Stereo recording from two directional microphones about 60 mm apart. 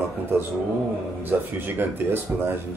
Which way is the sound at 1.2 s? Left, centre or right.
Right.